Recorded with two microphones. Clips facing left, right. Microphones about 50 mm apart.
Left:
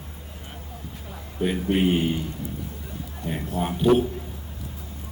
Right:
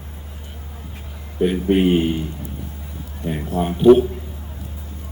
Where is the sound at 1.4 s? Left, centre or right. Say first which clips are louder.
Right 6 dB; right.